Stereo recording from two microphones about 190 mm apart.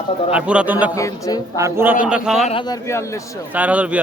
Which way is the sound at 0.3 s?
5° right (ahead or behind).